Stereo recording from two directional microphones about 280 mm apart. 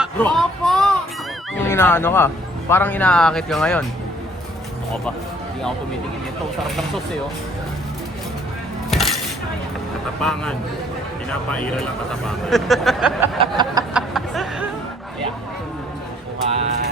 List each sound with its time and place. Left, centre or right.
0.0 s child singing: centre
1.6 s speech: centre
8.9 s dishes: centre
10.2 s speech: centre
13.4 s a sound: centre
13.9 s music: centre
16.5 s a sound: right